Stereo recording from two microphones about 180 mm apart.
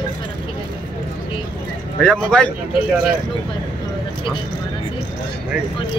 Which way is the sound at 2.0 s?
5° left (ahead or behind).